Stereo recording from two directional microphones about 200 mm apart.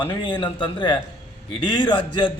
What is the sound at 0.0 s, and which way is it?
A man's voice, 25° left (ahead or behind).